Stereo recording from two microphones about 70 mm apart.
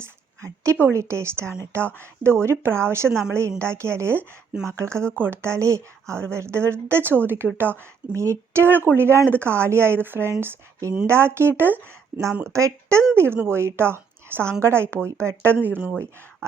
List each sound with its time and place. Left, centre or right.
0.0 s a woman's voice: right
8.1 s speech: right
12.4 s a woman's voice: right
15.4 s speech: right
16.4 s a woman's voice: right